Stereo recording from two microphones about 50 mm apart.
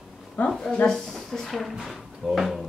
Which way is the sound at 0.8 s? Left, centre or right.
Centre.